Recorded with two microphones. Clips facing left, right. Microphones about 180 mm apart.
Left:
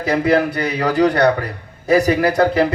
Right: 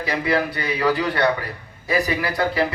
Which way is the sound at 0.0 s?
45° left (ahead or behind).